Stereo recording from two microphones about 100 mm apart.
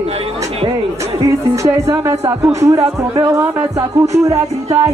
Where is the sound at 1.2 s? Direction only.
30° right (ahead or behind).